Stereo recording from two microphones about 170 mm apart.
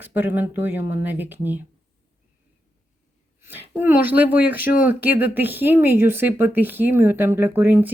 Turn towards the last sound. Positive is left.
turn(degrees=-10)  # may be behind; listen again after turning